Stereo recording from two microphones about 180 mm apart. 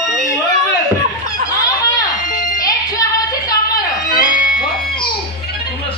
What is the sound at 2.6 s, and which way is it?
Music, 20° left (ahead or behind).